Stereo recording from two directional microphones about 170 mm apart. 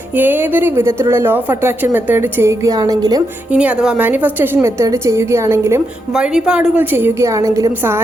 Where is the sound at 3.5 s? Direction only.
5° right (ahead or behind).